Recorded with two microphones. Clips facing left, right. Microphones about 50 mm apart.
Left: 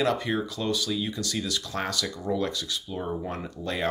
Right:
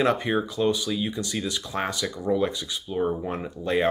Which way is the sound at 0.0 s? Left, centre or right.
Right.